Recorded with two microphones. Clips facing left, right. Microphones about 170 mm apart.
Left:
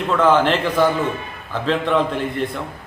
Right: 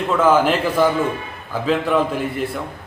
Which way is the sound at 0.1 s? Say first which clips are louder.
Even; 10° right (ahead or behind).